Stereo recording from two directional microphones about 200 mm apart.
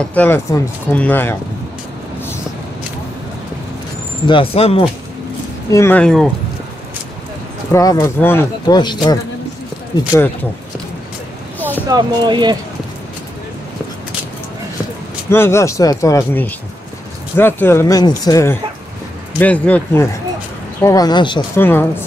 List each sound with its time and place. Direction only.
0.0 s speech: 10° left (ahead or behind)
4.3 s speech: 30° left (ahead or behind)
5.7 s speech: 10° left (ahead or behind)
7.7 s speech: 15° left (ahead or behind)
11.9 s speech: 20° right (ahead or behind)
15.2 s speech: 10° left (ahead or behind)
21.5 s speech: 10° left (ahead or behind)